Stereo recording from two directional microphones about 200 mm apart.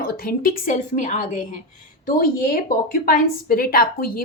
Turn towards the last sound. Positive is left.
turn(degrees=45)  # may be behind; listen again after turning